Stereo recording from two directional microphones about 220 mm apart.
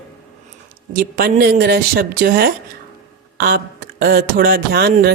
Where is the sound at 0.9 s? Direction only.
40° right (ahead or behind).